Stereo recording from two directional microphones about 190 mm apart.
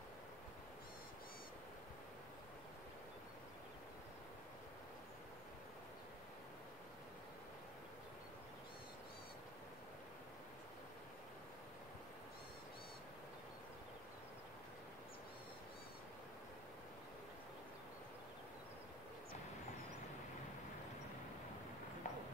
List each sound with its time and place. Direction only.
22.0 s clip-clop: 40° left (ahead or behind)